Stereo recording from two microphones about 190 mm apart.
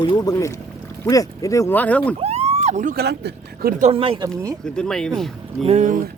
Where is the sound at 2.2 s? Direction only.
35° right (ahead or behind); by 3.7 s 55° right (ahead or behind).